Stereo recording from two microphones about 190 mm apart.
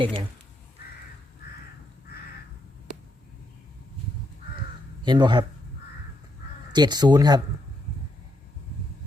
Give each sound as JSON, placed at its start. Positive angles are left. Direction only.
{"t": 0.0, "sound": "speech", "side_deg": -25}
{"t": 5.0, "sound": "speech", "side_deg": -25}
{"t": 6.7, "sound": "speech", "side_deg": -20}